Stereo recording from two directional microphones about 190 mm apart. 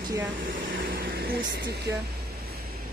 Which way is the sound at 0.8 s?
50° right (ahead or behind).